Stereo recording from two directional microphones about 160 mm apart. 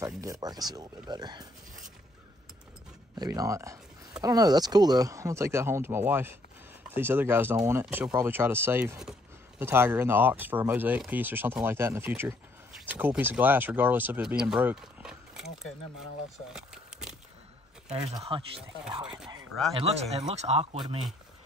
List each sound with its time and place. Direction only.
0.0 s speech: 20° right (ahead or behind)
3.2 s speech: 20° right (ahead or behind); by 16.1 s 5° right (ahead or behind)
16.5 s a sound: 5° right (ahead or behind)
18.3 s speech: 30° right (ahead or behind)
19.7 s speech: 40° right (ahead or behind)
20.7 s speech: 30° right (ahead or behind)